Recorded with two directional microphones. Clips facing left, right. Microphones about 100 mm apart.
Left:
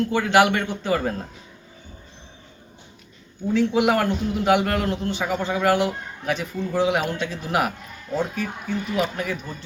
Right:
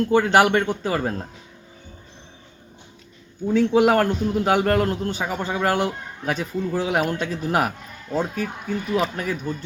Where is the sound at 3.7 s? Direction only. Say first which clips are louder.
Right 3 dB; 40° right (ahead or behind).